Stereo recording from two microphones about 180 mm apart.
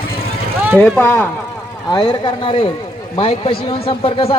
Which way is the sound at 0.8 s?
10° left (ahead or behind).